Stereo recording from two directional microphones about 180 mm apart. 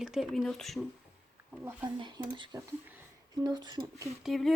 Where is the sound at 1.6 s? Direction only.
25° right (ahead or behind).